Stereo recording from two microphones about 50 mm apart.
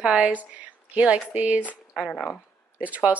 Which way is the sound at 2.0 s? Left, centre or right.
Centre.